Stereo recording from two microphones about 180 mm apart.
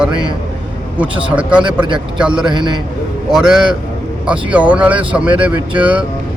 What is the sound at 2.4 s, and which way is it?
Speech, 25° right (ahead or behind).